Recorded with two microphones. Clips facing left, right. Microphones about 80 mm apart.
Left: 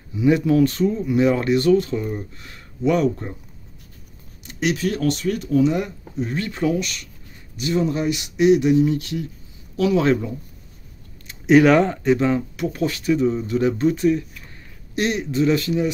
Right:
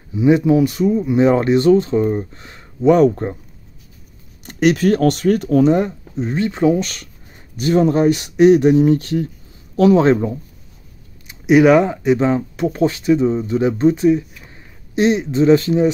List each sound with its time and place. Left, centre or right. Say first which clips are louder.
0.1 s speech: right 4 dB; right
4.4 s speech: right 8 dB; right
5.7 s speech: right 7 dB; right
6.8 s speech: right 4 dB; right
11.2 s speech: right 3 dB; centre; by 15.9 s right